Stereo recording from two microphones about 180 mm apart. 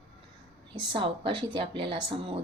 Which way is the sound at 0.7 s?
30° right (ahead or behind).